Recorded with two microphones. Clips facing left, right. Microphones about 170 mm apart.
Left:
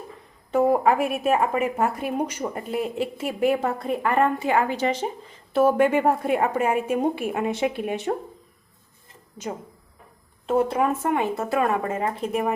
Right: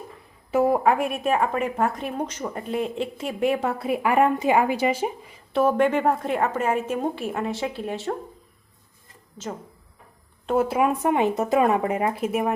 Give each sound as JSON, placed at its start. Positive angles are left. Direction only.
{"t": 0.5, "sound": "a woman's voice", "side_deg": 0}
{"t": 5.5, "sound": "a woman's voice", "side_deg": 5}
{"t": 10.4, "sound": "speech", "side_deg": 0}